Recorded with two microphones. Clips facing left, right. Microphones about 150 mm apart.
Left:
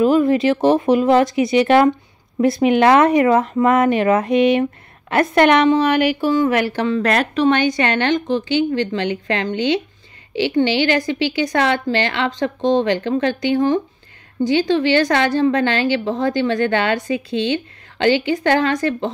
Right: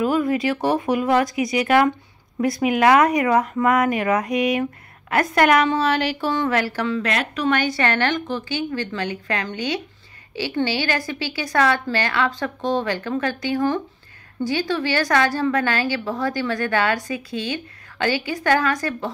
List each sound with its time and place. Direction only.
0.0 s a woman's voice: 25° left (ahead or behind)
7.0 s a woman's voice: 45° left (ahead or behind)
7.3 s a woman's voice: 25° left (ahead or behind)